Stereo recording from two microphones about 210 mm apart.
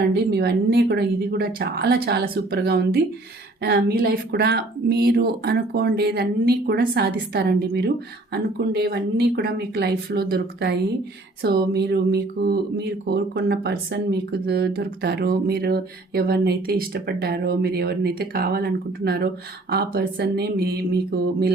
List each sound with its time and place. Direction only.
0.0 s speech: 50° right (ahead or behind)